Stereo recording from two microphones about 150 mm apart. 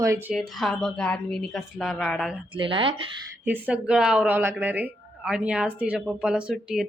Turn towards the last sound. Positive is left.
turn(degrees=-5)  # may be behind; listen again after turning